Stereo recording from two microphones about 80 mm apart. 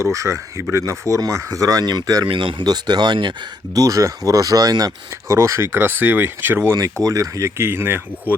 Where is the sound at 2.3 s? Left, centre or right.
Right.